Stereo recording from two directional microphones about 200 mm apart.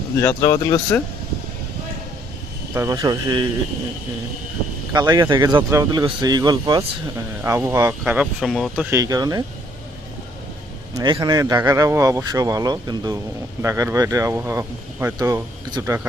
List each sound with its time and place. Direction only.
0.2 s speech: 15° left (ahead or behind)
2.7 s speech: 15° right (ahead or behind)
4.9 s speech: 20° right (ahead or behind); by 9.0 s 5° right (ahead or behind)
9.0 s speech: 20° right (ahead or behind)
10.9 s speech: 20° right (ahead or behind)